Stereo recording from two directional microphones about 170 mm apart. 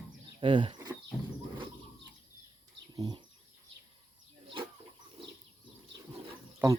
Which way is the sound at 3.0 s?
25° right (ahead or behind).